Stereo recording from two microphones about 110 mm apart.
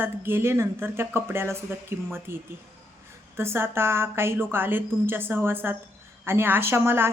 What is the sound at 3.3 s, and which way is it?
A woman's voice, 20° right (ahead or behind).